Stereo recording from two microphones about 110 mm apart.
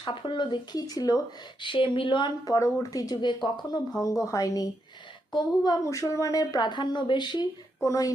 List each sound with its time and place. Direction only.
0.0 s speech: 45° left (ahead or behind)
1.6 s speech: 50° left (ahead or behind)
4.0 s speech: 30° left (ahead or behind)
5.8 s speech: 30° left (ahead or behind)
7.8 s speech: 30° left (ahead or behind)